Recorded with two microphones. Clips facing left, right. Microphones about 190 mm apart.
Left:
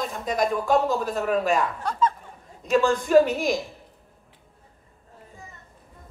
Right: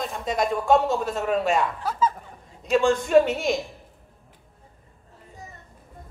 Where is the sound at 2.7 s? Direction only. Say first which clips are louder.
Even; 25° right (ahead or behind).